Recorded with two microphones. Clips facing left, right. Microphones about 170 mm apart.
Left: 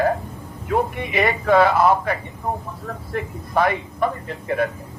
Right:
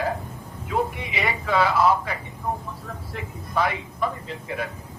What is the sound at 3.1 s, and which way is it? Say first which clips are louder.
Speech: left 5 dB; 55° left (ahead or behind).